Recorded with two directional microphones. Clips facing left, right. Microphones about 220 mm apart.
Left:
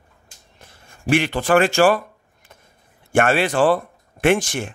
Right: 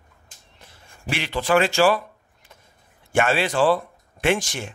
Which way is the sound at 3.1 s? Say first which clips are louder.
Left 3 dB; 55° left (ahead or behind).